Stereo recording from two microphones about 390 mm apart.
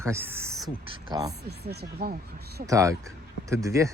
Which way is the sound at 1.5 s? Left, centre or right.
Right.